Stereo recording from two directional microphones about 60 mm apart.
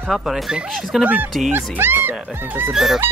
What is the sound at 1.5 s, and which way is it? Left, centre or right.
Speech, right.